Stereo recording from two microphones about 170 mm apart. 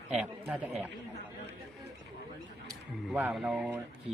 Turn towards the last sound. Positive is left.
turn(degrees=-5)  # may be behind; listen again after turning